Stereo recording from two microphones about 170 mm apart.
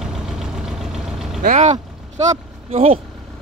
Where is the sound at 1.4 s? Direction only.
45° right (ahead or behind).